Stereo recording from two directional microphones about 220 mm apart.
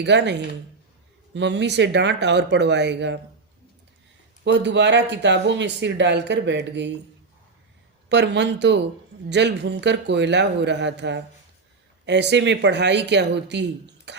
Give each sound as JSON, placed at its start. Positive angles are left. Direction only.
{"t": 0.0, "sound": "speech", "side_deg": -50}
{"t": 4.4, "sound": "speech", "side_deg": -55}
{"t": 8.1, "sound": "speech", "side_deg": -50}